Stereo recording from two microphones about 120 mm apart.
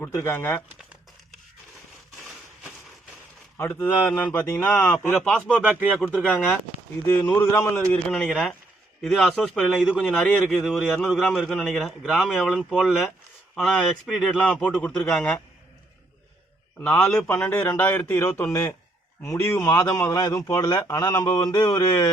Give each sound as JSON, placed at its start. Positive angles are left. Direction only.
{"t": 0.0, "sound": "speech", "side_deg": 20}
{"t": 3.6, "sound": "speech", "side_deg": 15}
{"t": 7.9, "sound": "a man's voice", "side_deg": 5}
{"t": 16.8, "sound": "speech", "side_deg": 10}